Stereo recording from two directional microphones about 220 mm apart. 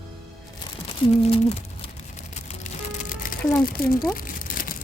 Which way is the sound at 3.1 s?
40° left (ahead or behind).